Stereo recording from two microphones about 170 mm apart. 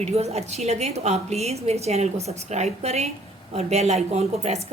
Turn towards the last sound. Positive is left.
turn(degrees=-40)  # may be behind; listen again after turning